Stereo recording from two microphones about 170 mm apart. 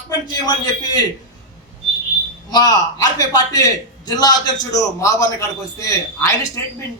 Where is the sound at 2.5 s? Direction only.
25° left (ahead or behind).